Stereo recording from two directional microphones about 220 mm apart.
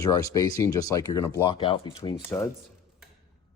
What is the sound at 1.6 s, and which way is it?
Speech, 20° left (ahead or behind).